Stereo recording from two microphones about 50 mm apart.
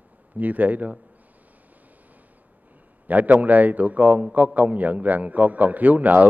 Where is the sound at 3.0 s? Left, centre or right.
Right.